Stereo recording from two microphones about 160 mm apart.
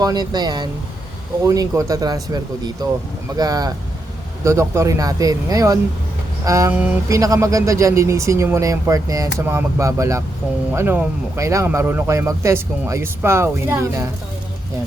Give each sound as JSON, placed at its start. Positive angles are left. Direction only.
{"t": 0.0, "sound": "speech", "side_deg": -25}